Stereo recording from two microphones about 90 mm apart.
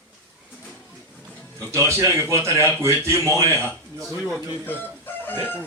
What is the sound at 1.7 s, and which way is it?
A man's voice, 30° right (ahead or behind).